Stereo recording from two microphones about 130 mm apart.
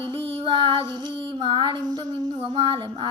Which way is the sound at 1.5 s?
40° right (ahead or behind).